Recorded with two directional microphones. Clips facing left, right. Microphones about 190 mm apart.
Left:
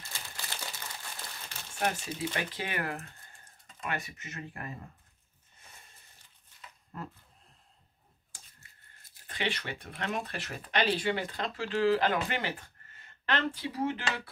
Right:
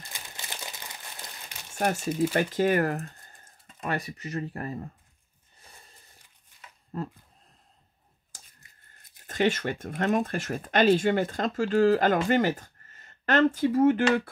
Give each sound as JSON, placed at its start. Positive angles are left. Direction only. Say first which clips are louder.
{"t": 0.1, "sound": "crumpling", "louder": "right 1 dB", "side_deg": -15}
{"t": 1.8, "sound": "speech", "louder": "right 7 dB", "side_deg": -45}
{"t": 6.9, "sound": "speech", "louder": "right 8 dB", "side_deg": -35}
{"t": 8.5, "sound": "a sound", "louder": "right 1 dB", "side_deg": -20}
{"t": 9.3, "sound": "speech", "louder": "right 10 dB", "side_deg": -45}